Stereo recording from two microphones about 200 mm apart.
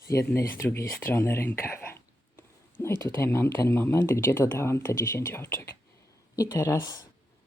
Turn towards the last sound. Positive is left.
turn(degrees=15)  # may be behind; listen again after turning